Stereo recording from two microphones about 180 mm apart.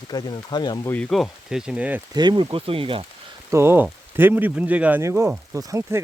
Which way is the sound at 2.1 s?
25° right (ahead or behind).